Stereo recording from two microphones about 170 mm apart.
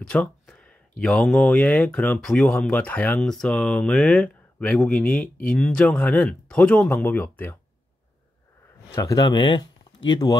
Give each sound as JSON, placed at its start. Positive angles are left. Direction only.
{"t": 0.0, "sound": "speech", "side_deg": 5}
{"t": 8.9, "sound": "speech", "side_deg": 20}